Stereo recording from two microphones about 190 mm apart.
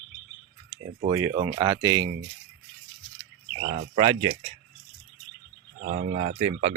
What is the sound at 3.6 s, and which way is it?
Speech, 50° right (ahead or behind).